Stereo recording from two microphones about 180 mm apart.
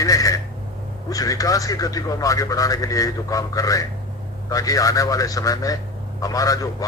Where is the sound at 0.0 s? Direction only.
20° left (ahead or behind).